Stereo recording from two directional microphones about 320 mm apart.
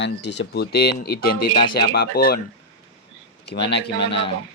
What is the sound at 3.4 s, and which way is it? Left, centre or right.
Speech, left.